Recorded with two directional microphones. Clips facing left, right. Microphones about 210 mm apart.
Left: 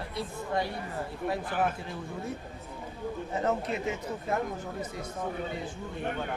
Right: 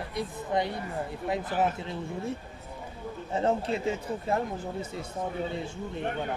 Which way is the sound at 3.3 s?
30° right (ahead or behind).